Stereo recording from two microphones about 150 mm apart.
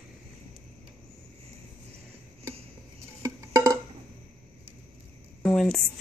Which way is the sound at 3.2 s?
20° right (ahead or behind).